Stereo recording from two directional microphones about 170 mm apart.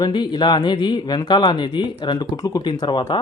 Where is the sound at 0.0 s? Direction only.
25° left (ahead or behind).